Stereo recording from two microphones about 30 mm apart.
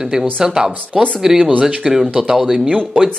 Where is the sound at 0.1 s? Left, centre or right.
Right.